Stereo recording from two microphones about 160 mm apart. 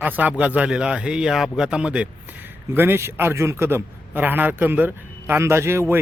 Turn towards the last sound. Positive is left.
turn(degrees=-15)  # may be behind; listen again after turning